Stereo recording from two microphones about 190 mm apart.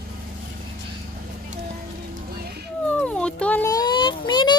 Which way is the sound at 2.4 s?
55° right (ahead or behind).